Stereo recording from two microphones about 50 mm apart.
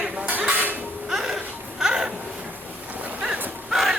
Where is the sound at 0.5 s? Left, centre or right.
Right.